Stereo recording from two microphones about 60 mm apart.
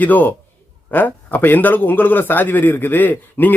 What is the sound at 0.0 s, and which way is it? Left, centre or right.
A man's voice, left.